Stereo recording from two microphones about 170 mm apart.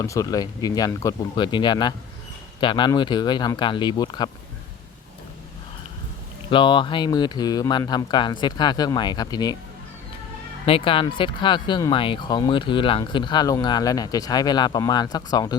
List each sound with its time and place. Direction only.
0.0 s speech: 20° left (ahead or behind)
6.5 s speech: 30° left (ahead or behind)
10.7 s speech: 30° left (ahead or behind)